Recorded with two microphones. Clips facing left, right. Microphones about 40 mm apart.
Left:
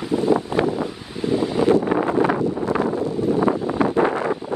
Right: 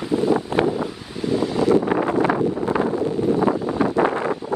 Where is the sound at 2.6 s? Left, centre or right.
Right.